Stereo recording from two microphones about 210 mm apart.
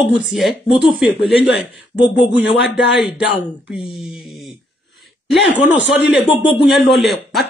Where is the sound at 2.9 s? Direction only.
Centre (ahead or behind).